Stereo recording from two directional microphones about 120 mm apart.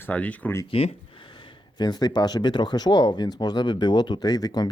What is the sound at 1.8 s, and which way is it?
Speech, 35° left (ahead or behind).